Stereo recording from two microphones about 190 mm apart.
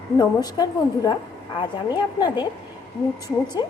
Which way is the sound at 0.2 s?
20° left (ahead or behind).